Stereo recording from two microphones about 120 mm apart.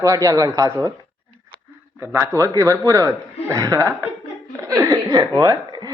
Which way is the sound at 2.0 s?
25° right (ahead or behind).